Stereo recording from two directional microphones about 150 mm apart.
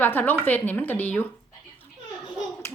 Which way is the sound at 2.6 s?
15° left (ahead or behind).